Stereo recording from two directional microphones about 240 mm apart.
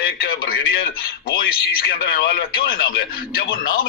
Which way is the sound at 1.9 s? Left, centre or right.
Left.